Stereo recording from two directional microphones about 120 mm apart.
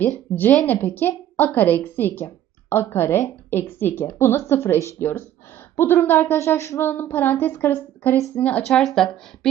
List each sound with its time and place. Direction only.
0.6 s a woman's voice: 15° left (ahead or behind)